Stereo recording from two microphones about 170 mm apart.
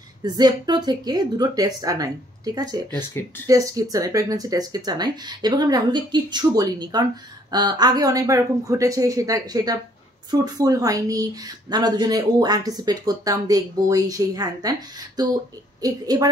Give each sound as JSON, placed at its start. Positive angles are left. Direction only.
{"t": 0.2, "sound": "speech", "side_deg": -25}
{"t": 2.9, "sound": "speech", "side_deg": 15}
{"t": 3.4, "sound": "speech", "side_deg": -20}